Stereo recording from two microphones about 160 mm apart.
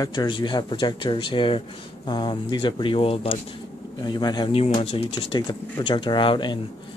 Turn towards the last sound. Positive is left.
turn(degrees=30)  # may be behind; listen again after turning